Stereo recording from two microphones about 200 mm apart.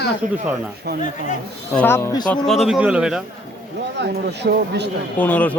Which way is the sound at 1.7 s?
10° left (ahead or behind).